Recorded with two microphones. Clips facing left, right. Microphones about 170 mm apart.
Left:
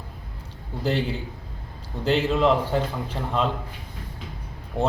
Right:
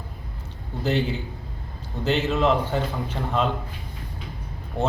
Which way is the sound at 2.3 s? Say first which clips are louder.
Even; centre (ahead or behind).